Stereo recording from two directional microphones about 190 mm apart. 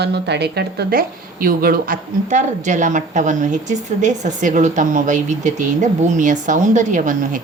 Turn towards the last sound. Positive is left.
turn(degrees=-40)  # may be behind; listen again after turning